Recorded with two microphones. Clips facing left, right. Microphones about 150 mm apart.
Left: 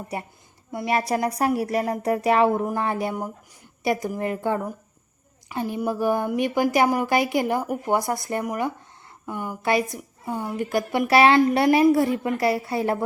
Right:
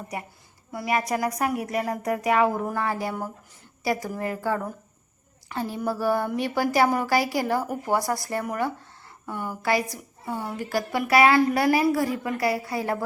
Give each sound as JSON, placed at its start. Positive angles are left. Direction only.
{"t": 0.1, "sound": "a woman's voice", "side_deg": 30}